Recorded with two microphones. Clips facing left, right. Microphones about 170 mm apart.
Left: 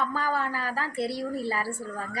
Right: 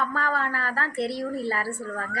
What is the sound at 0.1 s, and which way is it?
Speech, 75° right (ahead or behind).